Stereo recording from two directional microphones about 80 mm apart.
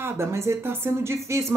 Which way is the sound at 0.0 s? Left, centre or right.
Right.